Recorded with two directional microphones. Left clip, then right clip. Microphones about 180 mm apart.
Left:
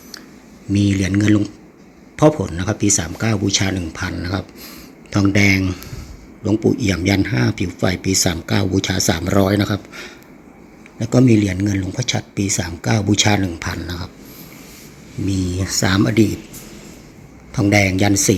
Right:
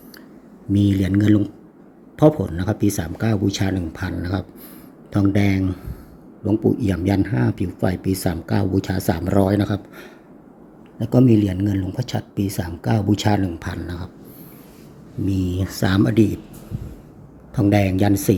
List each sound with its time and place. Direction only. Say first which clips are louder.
0.7 s speech: left 1 dB; 10° right (ahead or behind)
15.3 s speech: left 3 dB; 5° right (ahead or behind)
17.5 s speech: left 3 dB; 10° right (ahead or behind)